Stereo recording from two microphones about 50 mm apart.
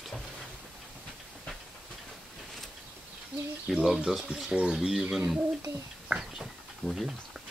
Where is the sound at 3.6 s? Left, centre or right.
Centre.